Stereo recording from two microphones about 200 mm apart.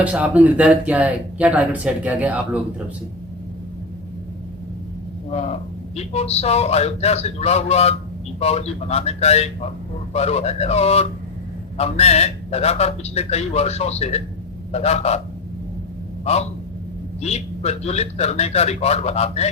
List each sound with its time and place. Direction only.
0.0 s speech: 5° right (ahead or behind)
5.3 s a man's voice: 30° left (ahead or behind)
16.2 s a man's voice: 30° left (ahead or behind)